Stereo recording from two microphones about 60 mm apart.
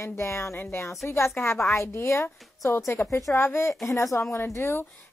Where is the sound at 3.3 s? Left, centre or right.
Left.